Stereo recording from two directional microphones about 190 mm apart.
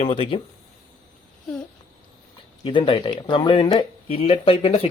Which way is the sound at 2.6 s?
25° left (ahead or behind).